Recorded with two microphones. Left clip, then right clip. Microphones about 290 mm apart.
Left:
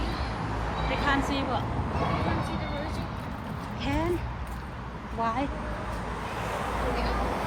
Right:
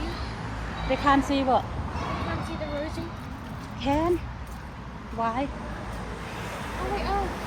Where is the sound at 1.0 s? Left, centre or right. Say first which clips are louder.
Right 6 dB; centre.